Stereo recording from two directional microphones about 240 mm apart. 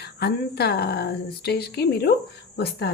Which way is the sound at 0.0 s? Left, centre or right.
Left.